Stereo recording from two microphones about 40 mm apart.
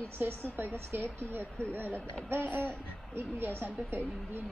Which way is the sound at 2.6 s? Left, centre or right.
Right.